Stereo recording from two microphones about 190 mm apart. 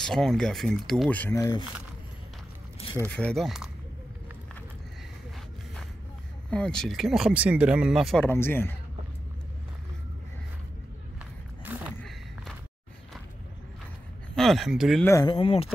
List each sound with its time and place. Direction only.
0.0 s speech: centre (ahead or behind); by 1.7 s 20° left (ahead or behind)
3.1 s speech: 5° left (ahead or behind)
6.5 s speech: 5° left (ahead or behind)
8.3 s speech: 10° left (ahead or behind)
11.1 s a sound: 10° right (ahead or behind)
14.3 s speech: centre (ahead or behind)
15.0 s speech: 15° left (ahead or behind)
15.3 s speech: 30° left (ahead or behind)